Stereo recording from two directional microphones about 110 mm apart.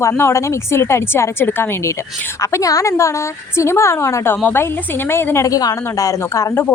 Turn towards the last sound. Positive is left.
turn(degrees=30)  # may be behind; listen again after turning